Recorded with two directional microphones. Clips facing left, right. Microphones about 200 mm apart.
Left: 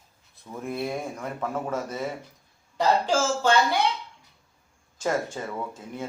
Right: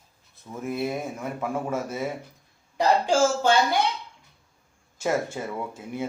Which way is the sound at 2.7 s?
10° right (ahead or behind).